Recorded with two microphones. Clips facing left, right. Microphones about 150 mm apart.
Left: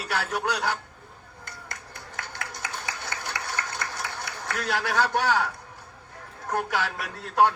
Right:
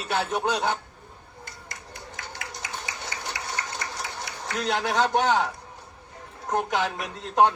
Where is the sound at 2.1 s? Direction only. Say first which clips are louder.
Left 2 dB; 55° left (ahead or behind).